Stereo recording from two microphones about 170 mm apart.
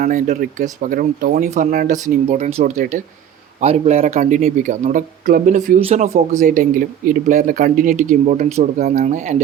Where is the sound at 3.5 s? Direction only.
40° right (ahead or behind).